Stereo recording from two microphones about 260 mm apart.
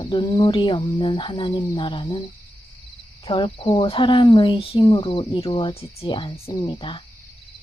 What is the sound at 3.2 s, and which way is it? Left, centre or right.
Speech, centre.